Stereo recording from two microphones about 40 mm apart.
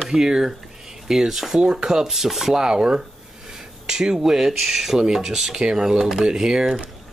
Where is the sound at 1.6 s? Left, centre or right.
Right.